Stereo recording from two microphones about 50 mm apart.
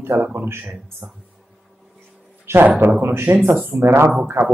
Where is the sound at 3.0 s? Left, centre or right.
Right.